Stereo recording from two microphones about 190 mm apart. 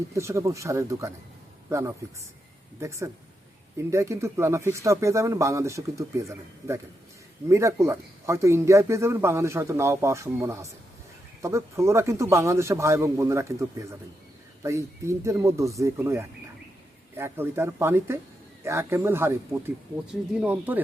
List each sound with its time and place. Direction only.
0.1 s speech: 15° right (ahead or behind)
2.8 s speech: 15° right (ahead or behind)
20.3 s speech: 10° right (ahead or behind)